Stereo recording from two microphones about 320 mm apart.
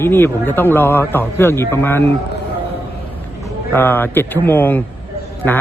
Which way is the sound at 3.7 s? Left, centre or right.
Centre.